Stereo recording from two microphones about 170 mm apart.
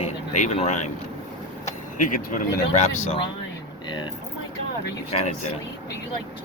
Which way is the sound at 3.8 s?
25° left (ahead or behind).